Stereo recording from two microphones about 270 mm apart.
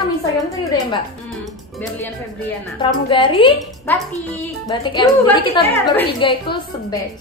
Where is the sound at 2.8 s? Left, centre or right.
Centre.